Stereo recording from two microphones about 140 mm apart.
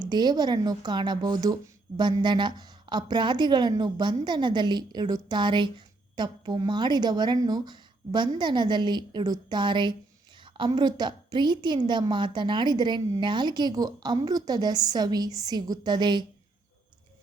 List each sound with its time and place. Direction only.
0.1 s a woman's voice: 30° right (ahead or behind)